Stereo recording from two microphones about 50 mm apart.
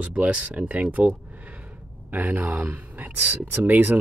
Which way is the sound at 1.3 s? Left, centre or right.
Right.